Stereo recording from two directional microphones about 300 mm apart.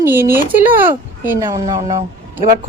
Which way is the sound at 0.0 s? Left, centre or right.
Centre.